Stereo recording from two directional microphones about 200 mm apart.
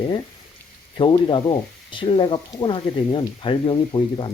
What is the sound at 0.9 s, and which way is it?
Speech, 25° left (ahead or behind).